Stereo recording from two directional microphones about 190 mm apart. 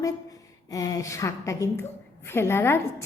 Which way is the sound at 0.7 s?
15° left (ahead or behind).